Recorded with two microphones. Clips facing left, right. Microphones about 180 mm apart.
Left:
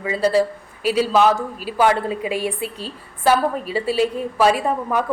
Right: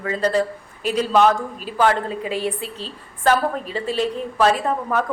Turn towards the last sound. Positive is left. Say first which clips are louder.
# left 1 dB
turn(degrees=10)  # may be behind; listen again after turning